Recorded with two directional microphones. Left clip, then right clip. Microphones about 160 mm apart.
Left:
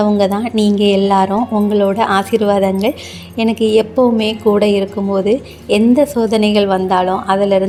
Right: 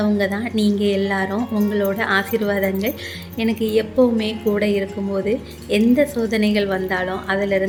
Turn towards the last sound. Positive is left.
turn(degrees=25)  # may be behind; listen again after turning